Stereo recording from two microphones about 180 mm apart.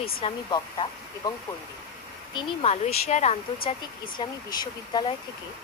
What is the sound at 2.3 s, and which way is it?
Speech, 35° left (ahead or behind).